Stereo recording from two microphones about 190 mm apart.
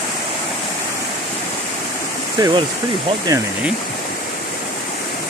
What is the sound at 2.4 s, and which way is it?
Speech, 20° right (ahead or behind).